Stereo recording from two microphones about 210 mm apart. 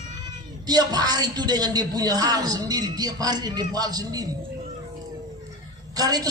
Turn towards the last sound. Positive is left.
turn(degrees=-20)  # may be behind; listen again after turning